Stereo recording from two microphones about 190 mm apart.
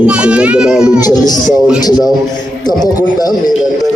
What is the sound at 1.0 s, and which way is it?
Speech, 20° left (ahead or behind).